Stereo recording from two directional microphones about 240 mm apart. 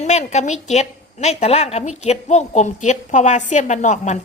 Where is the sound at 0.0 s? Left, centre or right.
Left.